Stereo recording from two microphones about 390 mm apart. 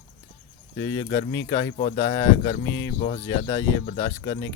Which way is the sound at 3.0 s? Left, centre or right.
Centre.